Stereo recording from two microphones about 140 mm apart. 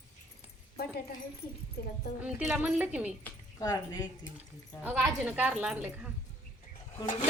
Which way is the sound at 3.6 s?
30° left (ahead or behind).